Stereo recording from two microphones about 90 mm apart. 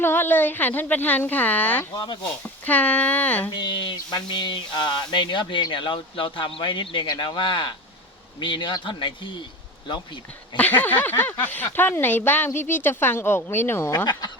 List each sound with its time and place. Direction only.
0.0 s speech: 25° left (ahead or behind)
1.9 s speech: 55° left (ahead or behind)
2.4 s speech: 20° left (ahead or behind)
3.5 s speech: 55° left (ahead or behind)
10.6 s speech: 20° left (ahead or behind)